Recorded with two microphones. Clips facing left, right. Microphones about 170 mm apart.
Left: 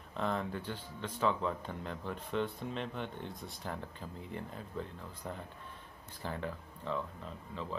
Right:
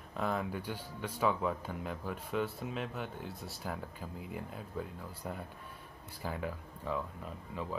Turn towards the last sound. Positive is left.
turn(degrees=-10)  # may be behind; listen again after turning